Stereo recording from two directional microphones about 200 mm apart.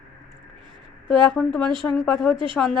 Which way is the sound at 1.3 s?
5° left (ahead or behind).